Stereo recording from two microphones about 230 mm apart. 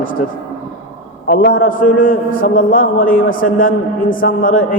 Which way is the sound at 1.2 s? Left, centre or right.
Left.